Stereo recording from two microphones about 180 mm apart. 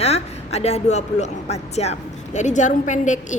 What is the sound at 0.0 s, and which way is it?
A woman's voice, 35° left (ahead or behind).